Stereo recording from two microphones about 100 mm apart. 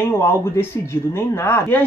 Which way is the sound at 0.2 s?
25° left (ahead or behind).